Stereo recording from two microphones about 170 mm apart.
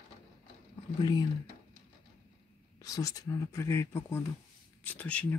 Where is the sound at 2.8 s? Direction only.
20° left (ahead or behind).